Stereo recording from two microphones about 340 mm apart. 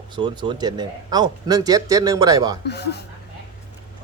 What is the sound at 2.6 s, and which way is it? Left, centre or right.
Speech, left.